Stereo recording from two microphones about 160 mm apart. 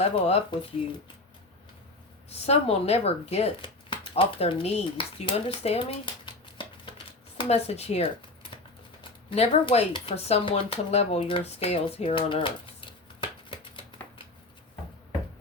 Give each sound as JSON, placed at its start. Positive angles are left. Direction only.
{"t": 0.0, "sound": "speech", "side_deg": 40}
{"t": 2.5, "sound": "speech", "side_deg": 40}
{"t": 6.2, "sound": "a sound", "side_deg": 30}
{"t": 7.3, "sound": "speech", "side_deg": 40}